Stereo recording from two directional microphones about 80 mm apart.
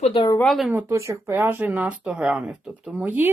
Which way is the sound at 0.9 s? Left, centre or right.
Right.